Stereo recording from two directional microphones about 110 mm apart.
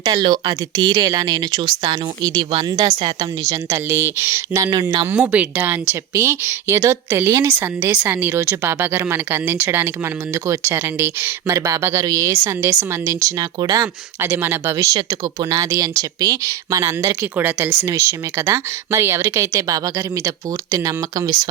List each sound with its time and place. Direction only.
0.0 s speech: 45° right (ahead or behind)
5.0 s speech: 20° right (ahead or behind); by 13.8 s 40° right (ahead or behind)
14.2 s speech: 20° right (ahead or behind)
14.9 s speech: 35° right (ahead or behind)
17.3 s speech: 15° right (ahead or behind); by 21.4 s 35° right (ahead or behind)